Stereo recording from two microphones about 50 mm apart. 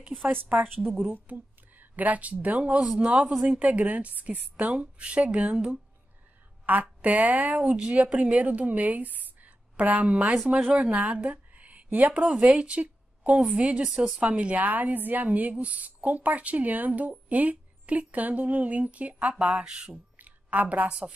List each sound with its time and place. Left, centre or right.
1.1 s speech: right
2.8 s a woman's voice: centre
10.2 s speech: centre
10.5 s speech: right
12.5 s a sound: right
13.4 s a woman's voice: right
19.9 s speech: right